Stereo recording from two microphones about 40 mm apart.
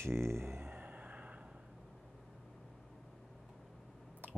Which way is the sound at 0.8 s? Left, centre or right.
Right.